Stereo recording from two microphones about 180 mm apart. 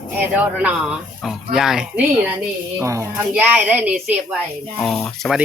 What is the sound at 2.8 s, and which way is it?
Speech, 15° right (ahead or behind).